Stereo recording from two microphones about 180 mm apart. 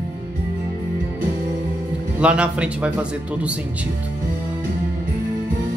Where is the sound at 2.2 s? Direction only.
5° right (ahead or behind).